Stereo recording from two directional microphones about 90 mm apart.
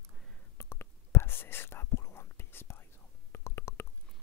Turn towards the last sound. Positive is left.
turn(degrees=30)  # may be behind; listen again after turning